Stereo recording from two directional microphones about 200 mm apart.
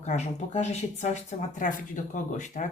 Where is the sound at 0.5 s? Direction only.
35° left (ahead or behind).